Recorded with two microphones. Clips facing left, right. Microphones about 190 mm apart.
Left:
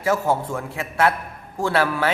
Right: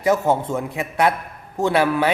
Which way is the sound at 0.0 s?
20° right (ahead or behind).